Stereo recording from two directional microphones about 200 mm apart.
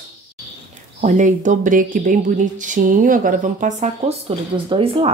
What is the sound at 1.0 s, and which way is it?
Speech, 40° right (ahead or behind).